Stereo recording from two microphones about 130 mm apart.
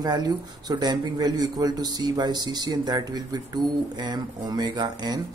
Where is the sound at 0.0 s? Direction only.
30° right (ahead or behind).